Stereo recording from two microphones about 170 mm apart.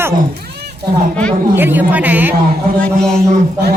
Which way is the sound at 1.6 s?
10° right (ahead or behind).